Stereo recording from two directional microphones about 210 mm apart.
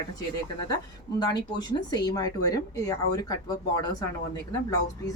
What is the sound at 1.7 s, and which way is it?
A woman's voice, 20° left (ahead or behind).